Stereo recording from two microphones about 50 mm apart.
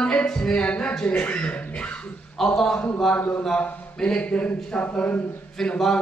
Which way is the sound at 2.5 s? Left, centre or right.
Centre.